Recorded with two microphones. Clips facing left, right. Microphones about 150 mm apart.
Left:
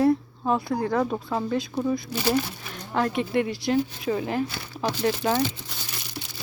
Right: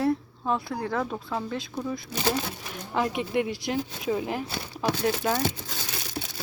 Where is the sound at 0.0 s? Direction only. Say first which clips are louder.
Left 5 dB; centre (ahead or behind).